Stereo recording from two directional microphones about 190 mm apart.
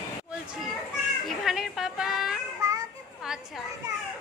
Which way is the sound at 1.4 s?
Centre (ahead or behind).